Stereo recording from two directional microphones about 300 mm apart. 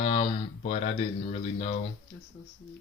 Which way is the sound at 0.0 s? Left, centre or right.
Left.